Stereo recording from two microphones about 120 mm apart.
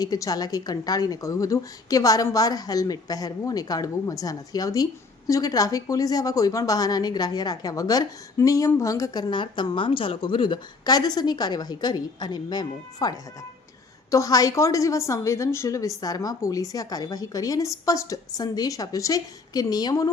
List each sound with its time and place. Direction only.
0.0 s a woman's voice: 30° left (ahead or behind)